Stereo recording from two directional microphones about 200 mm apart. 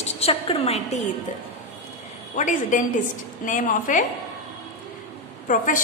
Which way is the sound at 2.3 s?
40° left (ahead or behind).